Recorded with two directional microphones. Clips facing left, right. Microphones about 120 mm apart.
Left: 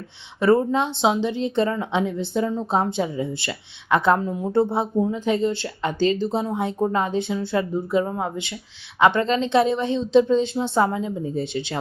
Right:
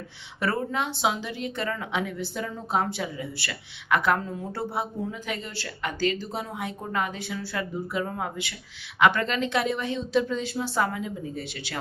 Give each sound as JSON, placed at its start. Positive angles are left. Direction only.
{"t": 0.3, "sound": "speech", "side_deg": 25}